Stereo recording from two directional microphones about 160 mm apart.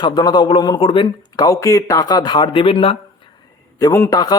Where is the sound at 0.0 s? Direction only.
25° left (ahead or behind).